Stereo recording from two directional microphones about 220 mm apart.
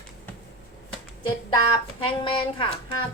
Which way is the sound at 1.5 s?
20° left (ahead or behind).